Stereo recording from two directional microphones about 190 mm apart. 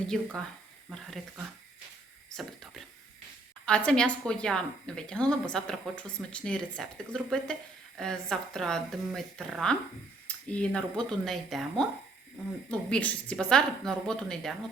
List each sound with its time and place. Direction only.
0.1 s speech: centre (ahead or behind)
10.2 s a sound: 5° left (ahead or behind)
10.8 s speech: 5° left (ahead or behind)
12.9 s speech: 5° left (ahead or behind)